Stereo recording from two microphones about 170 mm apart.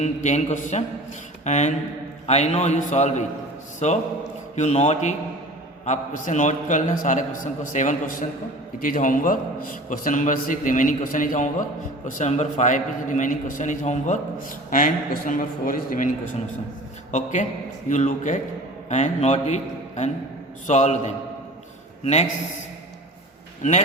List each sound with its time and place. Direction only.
0.0 s a man's voice: 45° left (ahead or behind)
17.1 s a man's voice: 45° left (ahead or behind)